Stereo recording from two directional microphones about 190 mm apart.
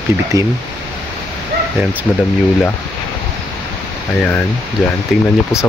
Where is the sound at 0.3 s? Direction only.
15° right (ahead or behind).